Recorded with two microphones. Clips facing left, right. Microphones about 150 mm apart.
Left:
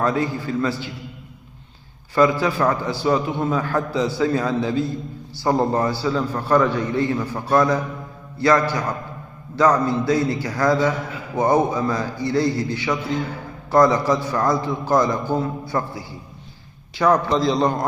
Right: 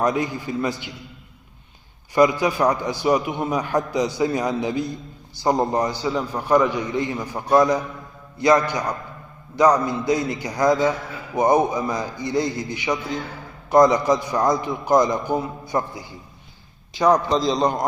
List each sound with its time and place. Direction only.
0.0 s a man's voice: 15° right (ahead or behind)
2.1 s a man's voice: 15° right (ahead or behind)